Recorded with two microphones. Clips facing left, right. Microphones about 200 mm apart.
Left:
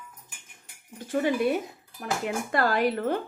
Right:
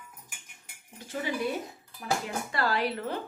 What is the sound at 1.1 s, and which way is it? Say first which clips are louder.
Speech: left 7 dB; 50° left (ahead or behind).